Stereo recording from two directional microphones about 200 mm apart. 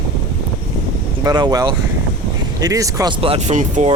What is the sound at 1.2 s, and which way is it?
Speech, 20° right (ahead or behind).